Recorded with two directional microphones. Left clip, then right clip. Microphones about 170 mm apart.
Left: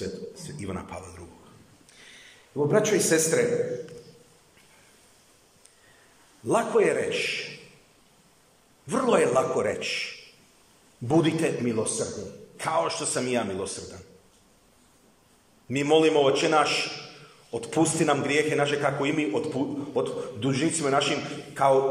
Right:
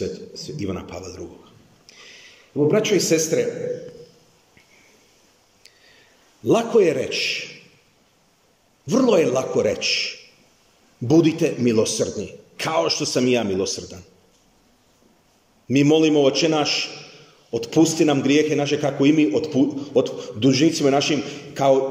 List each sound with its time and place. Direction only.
0.0 s speech: 5° right (ahead or behind)
2.0 s a sound: 5° right (ahead or behind)
3.1 s a man's voice: 15° right (ahead or behind)
6.4 s a man's voice: 20° right (ahead or behind)
8.8 s a man's voice: 20° right (ahead or behind)
11.1 s a man's voice: 20° right (ahead or behind)
15.7 s a man's voice: 15° right (ahead or behind)